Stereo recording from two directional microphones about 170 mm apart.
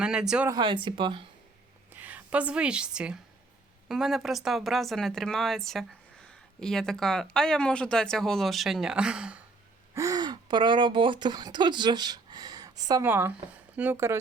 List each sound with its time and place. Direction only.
0.0 s speech: 5° right (ahead or behind)
0.5 s speech: 25° right (ahead or behind)
1.9 s a woman's voice: 10° right (ahead or behind)
9.9 s speech: 20° right (ahead or behind)